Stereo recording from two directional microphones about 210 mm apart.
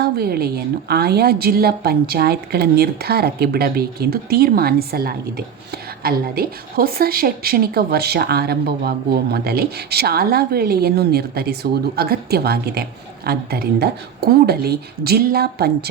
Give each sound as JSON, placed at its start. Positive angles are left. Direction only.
{"t": 0.0, "sound": "a woman's voice", "side_deg": -50}